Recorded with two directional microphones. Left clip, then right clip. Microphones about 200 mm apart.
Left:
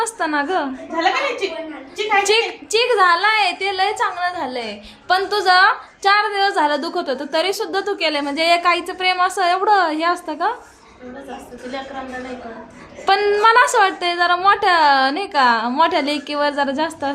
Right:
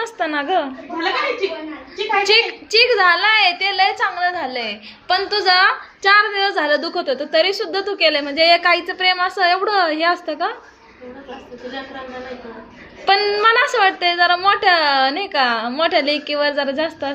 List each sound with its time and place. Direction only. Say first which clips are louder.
0.0 s a woman's voice: left 1 dB; 20° left (ahead or behind)
2.2 s a woman's voice: right 2 dB; 20° left (ahead or behind)
13.1 s a woman's voice: even; 25° left (ahead or behind)